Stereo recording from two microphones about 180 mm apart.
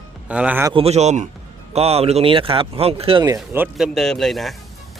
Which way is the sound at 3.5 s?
10° right (ahead or behind).